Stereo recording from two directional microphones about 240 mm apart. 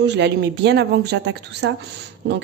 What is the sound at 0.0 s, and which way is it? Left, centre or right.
A woman's voice, right.